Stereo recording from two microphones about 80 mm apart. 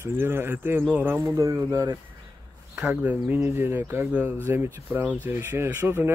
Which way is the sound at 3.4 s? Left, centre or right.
Right.